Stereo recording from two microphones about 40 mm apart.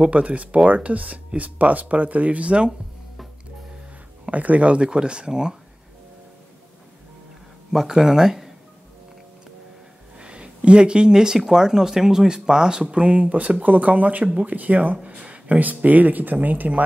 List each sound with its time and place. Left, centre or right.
0.0 s speech: right
4.3 s speech: right; by 5.6 s centre
7.7 s speech: centre
10.1 s a sound: right
11.3 s speech: centre; by 16.8 s right